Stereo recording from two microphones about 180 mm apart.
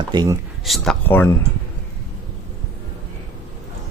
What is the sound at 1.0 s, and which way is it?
Speech, 10° left (ahead or behind).